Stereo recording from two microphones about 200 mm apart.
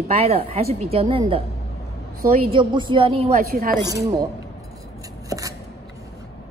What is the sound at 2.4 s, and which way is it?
Speech, 25° right (ahead or behind).